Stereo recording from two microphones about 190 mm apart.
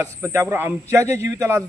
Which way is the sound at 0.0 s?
15° right (ahead or behind).